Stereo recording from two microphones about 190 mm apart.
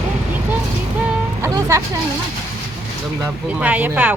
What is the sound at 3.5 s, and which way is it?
Speech, 10° right (ahead or behind).